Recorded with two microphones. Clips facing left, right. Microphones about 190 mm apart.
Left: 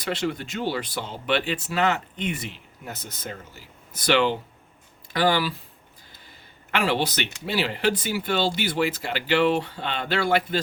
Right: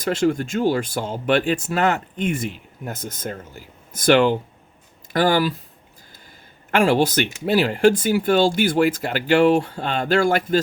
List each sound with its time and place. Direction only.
0.0 s speech: 45° right (ahead or behind)
6.7 s speech: 45° right (ahead or behind)